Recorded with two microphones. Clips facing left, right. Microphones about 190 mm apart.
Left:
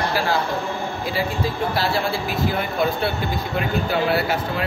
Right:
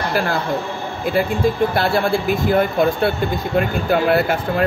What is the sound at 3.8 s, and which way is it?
Speech, 50° right (ahead or behind).